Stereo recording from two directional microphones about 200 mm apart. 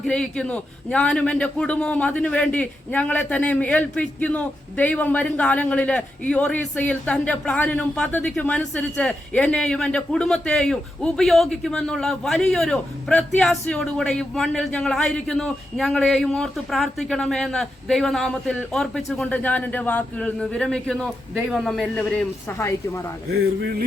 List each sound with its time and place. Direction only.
0.0 s a man's voice: 5° left (ahead or behind)
22.4 s speech: 15° left (ahead or behind)
23.3 s a sound: 55° right (ahead or behind)